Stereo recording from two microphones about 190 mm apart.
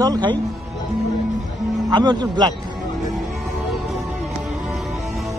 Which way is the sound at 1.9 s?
20° right (ahead or behind).